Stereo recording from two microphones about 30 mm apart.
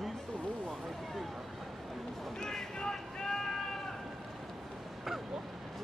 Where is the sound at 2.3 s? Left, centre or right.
Left.